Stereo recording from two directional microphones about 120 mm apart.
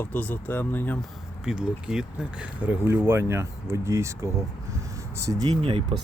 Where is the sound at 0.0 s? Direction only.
15° left (ahead or behind).